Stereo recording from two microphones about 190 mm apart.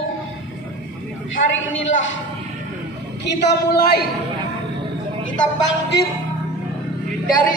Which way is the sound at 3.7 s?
55° left (ahead or behind).